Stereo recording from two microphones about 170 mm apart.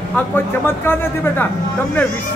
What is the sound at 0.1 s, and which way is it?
A man's voice, 10° left (ahead or behind).